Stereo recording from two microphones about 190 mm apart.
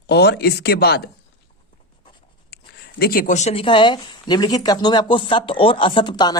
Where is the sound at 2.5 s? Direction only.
55° left (ahead or behind).